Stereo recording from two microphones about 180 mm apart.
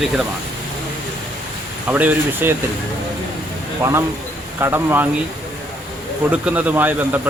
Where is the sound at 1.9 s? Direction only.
10° right (ahead or behind).